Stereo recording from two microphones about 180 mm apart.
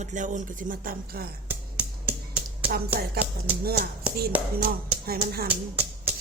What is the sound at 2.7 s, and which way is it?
Speech, 60° right (ahead or behind).